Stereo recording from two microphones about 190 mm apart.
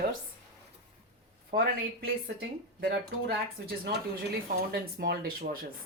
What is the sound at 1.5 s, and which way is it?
Speech, 60° right (ahead or behind).